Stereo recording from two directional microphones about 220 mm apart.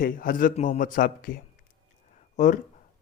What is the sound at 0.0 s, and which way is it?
Speech, 40° left (ahead or behind).